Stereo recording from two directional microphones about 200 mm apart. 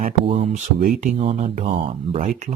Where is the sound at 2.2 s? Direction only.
40° right (ahead or behind).